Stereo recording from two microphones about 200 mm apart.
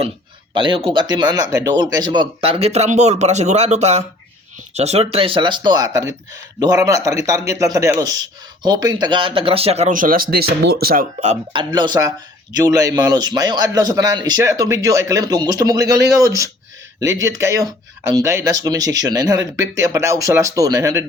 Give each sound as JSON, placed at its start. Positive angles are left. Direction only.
{"t": 0.5, "sound": "a man's voice", "side_deg": -25}
{"t": 11.2, "sound": "speech", "side_deg": -35}
{"t": 11.7, "sound": "a man's voice", "side_deg": -20}